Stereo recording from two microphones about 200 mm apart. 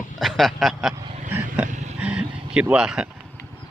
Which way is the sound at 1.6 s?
40° right (ahead or behind).